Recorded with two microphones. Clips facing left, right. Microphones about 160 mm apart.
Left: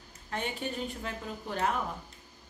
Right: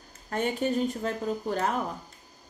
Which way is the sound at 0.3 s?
45° right (ahead or behind).